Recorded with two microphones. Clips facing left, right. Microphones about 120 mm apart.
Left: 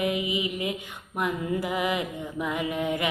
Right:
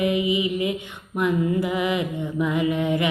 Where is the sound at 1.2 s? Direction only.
45° left (ahead or behind).